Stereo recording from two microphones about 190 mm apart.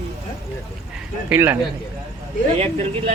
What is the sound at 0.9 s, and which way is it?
Speech, 10° right (ahead or behind).